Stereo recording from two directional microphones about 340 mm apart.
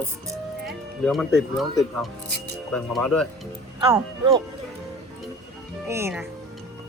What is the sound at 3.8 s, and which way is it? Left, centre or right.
Speech, centre.